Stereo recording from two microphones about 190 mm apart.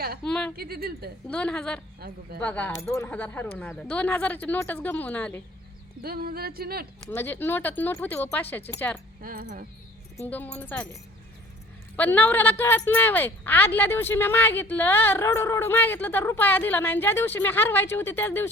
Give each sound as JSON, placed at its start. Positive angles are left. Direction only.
{"t": 0.2, "sound": "a woman's voice", "side_deg": 5}
{"t": 0.5, "sound": "speech", "side_deg": -55}
{"t": 1.3, "sound": "a woman's voice", "side_deg": 5}
{"t": 2.0, "sound": "speech", "side_deg": -55}
{"t": 2.4, "sound": "speech", "side_deg": 5}
{"t": 6.0, "sound": "speech", "side_deg": -55}
{"t": 7.1, "sound": "speech", "side_deg": 10}
{"t": 9.2, "sound": "speech", "side_deg": -50}
{"t": 10.2, "sound": "speech", "side_deg": 10}
{"t": 11.9, "sound": "speech", "side_deg": 10}